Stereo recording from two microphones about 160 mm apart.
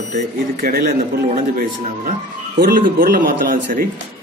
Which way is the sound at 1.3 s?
55° right (ahead or behind).